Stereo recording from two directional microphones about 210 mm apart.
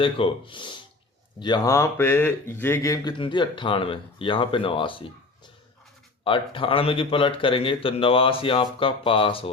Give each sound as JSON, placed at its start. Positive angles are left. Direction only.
{"t": 0.0, "sound": "speech", "side_deg": 25}
{"t": 6.2, "sound": "speech", "side_deg": 25}